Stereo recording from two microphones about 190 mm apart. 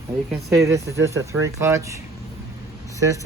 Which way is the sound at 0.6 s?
15° right (ahead or behind).